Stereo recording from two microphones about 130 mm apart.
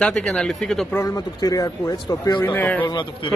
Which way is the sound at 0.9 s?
25° left (ahead or behind).